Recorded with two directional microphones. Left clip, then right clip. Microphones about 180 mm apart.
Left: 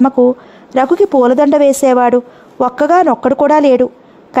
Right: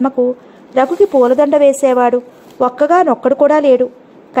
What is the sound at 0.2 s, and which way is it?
Speech, 30° left (ahead or behind).